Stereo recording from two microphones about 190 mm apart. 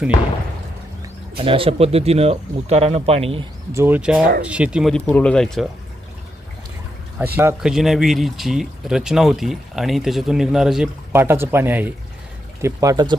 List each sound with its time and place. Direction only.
1.4 s speech: 30° right (ahead or behind)
3.7 s speech: 10° right (ahead or behind); by 5.6 s 5° left (ahead or behind)
7.3 s speech: 5° right (ahead or behind)